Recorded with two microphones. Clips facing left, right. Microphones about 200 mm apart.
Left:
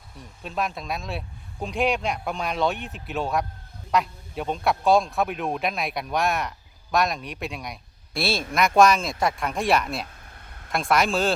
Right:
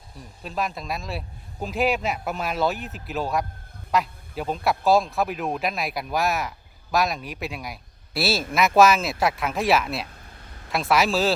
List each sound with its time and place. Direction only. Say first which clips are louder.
0.2 s speech: even; centre (ahead or behind)
10.4 s a sound: right 2 dB; 60° left (ahead or behind)
10.7 s speech: right 1 dB; 5° right (ahead or behind)